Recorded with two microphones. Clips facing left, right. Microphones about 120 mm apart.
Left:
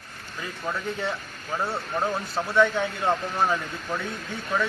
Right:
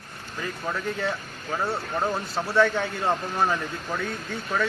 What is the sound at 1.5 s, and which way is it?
Speech, centre (ahead or behind).